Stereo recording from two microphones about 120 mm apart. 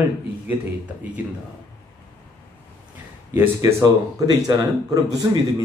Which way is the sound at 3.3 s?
20° right (ahead or behind).